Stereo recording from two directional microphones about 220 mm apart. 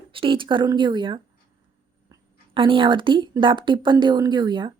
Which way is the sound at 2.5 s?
25° right (ahead or behind).